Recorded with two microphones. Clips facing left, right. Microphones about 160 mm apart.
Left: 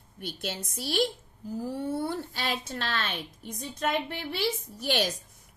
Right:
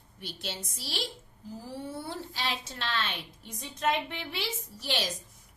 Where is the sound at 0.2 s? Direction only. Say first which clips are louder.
Left 4 dB; 55° left (ahead or behind).